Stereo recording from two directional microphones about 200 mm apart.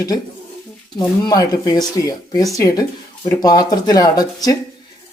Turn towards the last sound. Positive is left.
turn(degrees=20)  # may be behind; listen again after turning